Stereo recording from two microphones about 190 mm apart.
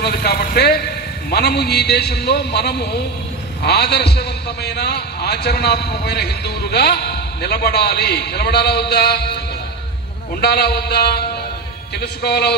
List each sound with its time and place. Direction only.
0.0 s a man's voice: 60° left (ahead or behind)
10.4 s a man's voice: 55° left (ahead or behind)